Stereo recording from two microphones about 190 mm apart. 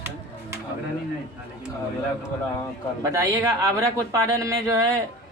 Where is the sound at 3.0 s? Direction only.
15° right (ahead or behind).